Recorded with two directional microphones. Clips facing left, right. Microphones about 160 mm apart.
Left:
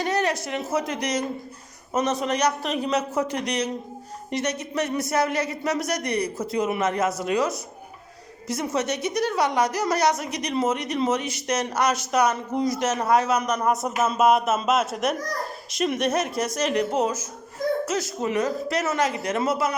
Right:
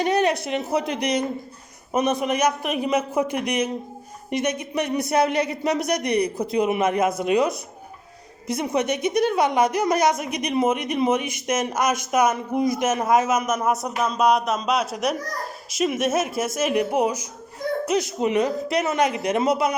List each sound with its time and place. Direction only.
0.0 s a sound: 20° right (ahead or behind)
0.4 s a woman's voice: 20° right (ahead or behind)
8.6 s a woman's voice: 15° right (ahead or behind)